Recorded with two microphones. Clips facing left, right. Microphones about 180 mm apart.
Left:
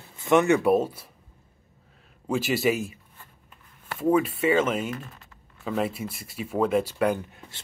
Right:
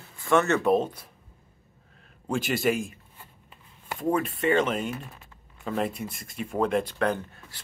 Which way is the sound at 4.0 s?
5° left (ahead or behind).